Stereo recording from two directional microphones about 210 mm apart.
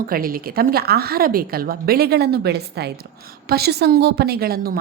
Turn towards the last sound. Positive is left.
turn(degrees=-45)  # may be behind; listen again after turning